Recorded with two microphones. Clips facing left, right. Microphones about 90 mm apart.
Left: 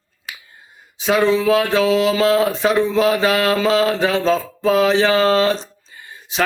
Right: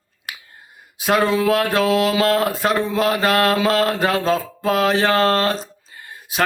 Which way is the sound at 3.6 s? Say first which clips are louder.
Left 2 dB; 50° right (ahead or behind).